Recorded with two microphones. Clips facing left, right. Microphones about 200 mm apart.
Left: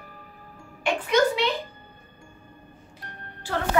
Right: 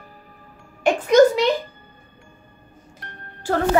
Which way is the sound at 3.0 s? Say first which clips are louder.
Right 1 dB; 70° right (ahead or behind).